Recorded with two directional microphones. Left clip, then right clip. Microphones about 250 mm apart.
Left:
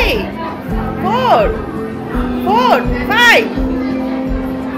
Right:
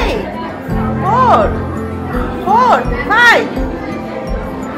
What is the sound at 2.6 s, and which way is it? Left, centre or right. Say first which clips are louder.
Music: right 2 dB; centre.